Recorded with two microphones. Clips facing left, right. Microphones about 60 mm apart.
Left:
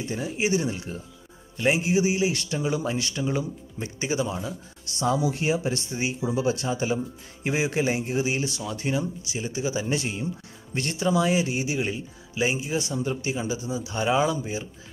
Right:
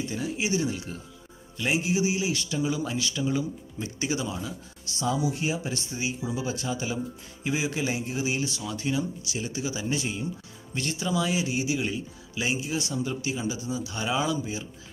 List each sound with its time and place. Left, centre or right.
0.4 s speech: left
4.0 s speech: left
4.9 s speech: left
9.3 s speech: left
9.8 s speech: left
11.1 s speech: left